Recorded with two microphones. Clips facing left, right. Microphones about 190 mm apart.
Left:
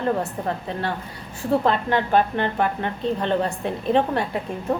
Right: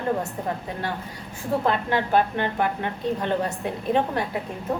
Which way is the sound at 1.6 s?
10° right (ahead or behind).